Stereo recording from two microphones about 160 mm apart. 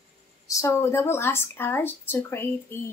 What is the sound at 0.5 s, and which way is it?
Speech, 20° left (ahead or behind).